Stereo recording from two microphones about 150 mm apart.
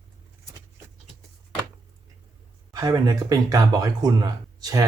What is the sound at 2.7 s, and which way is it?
Speech, 25° right (ahead or behind).